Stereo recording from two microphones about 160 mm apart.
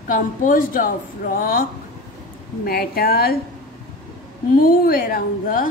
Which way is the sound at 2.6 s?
70° left (ahead or behind).